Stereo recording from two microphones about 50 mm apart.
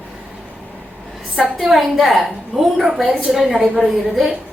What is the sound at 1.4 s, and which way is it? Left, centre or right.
A woman's voice, centre.